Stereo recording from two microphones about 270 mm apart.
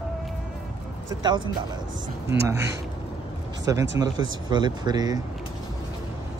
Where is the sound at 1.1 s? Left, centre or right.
Centre.